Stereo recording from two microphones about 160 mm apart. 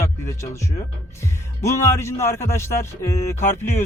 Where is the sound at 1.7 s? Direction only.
15° left (ahead or behind).